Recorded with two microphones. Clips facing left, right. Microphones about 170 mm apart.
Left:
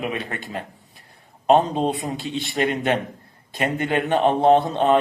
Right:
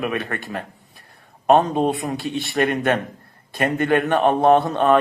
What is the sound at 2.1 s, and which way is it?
A man's voice, 20° left (ahead or behind).